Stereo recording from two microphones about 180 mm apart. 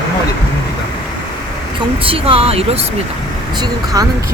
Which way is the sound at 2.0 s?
30° right (ahead or behind).